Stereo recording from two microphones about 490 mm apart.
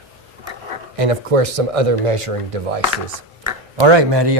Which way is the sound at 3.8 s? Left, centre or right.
Right.